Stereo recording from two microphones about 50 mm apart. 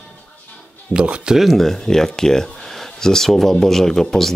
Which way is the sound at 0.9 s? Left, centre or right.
Right.